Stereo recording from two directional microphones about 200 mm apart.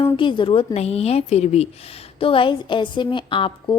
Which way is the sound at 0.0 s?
25° left (ahead or behind).